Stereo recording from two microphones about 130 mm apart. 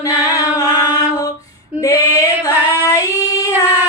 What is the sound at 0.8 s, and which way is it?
Mantra, 35° left (ahead or behind).